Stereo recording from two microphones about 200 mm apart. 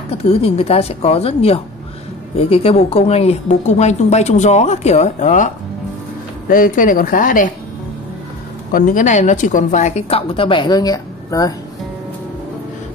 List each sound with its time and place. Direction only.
0.1 s a woman's voice: 30° left (ahead or behind)
6.5 s speech: 45° left (ahead or behind)
8.7 s a woman's voice: 45° left (ahead or behind); by 11.5 s 20° left (ahead or behind)